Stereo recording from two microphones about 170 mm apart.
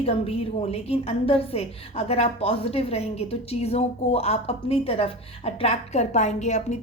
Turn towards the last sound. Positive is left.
turn(degrees=40)  # may be behind; listen again after turning